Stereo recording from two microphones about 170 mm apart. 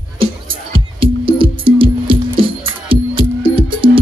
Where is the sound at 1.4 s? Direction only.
30° right (ahead or behind).